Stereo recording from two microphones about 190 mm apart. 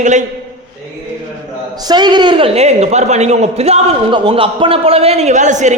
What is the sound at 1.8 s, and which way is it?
A man's voice, 20° right (ahead or behind).